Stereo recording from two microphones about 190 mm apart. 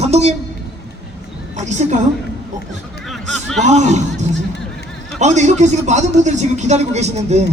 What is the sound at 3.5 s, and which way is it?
Speech, 40° right (ahead or behind).